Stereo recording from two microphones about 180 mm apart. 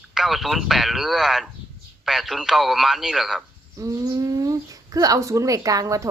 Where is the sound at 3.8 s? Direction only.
20° right (ahead or behind).